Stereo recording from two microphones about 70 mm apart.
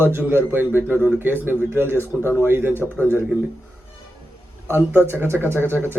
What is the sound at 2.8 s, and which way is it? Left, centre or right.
Speech, left.